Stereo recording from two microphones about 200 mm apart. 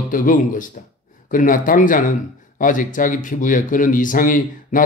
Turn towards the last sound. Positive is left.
turn(degrees=40)  # may be behind; listen again after turning